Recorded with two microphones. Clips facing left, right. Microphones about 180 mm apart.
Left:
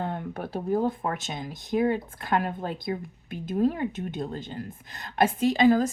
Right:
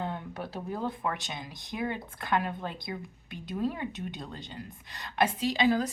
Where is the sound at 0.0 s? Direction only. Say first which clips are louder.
Left 4 dB; 55° left (ahead or behind).